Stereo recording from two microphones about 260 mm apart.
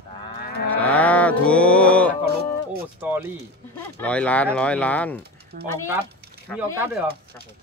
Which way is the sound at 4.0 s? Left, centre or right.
Centre.